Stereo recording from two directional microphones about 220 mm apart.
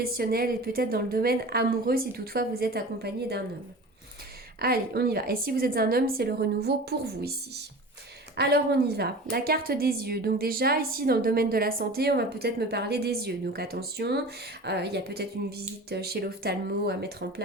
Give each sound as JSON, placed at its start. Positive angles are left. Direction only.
{"t": 0.0, "sound": "a woman's voice", "side_deg": -45}
{"t": 4.6, "sound": "a woman's voice", "side_deg": -45}
{"t": 8.4, "sound": "a woman's voice", "side_deg": -45}